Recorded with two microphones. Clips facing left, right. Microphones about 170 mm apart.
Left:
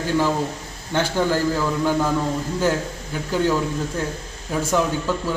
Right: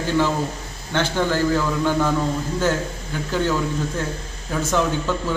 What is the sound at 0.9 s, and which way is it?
A man's voice, 10° left (ahead or behind).